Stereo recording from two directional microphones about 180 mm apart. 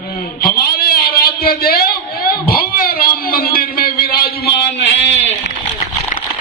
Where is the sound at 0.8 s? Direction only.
55° left (ahead or behind).